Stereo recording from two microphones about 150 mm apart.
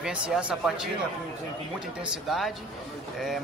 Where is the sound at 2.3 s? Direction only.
Centre (ahead or behind).